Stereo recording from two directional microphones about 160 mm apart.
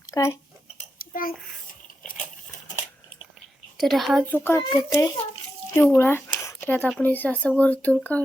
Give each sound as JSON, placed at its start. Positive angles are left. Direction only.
{"t": 0.1, "sound": "speech", "side_deg": 20}
{"t": 0.9, "sound": "a sound", "side_deg": 65}
{"t": 3.8, "sound": "a woman's voice", "side_deg": 0}
{"t": 4.3, "sound": "speech", "side_deg": 15}